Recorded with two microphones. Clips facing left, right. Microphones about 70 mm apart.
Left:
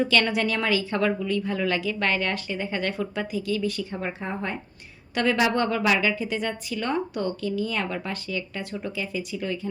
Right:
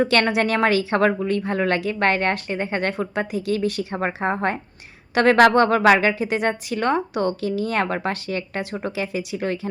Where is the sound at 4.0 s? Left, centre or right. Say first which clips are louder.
Right 8 dB; right.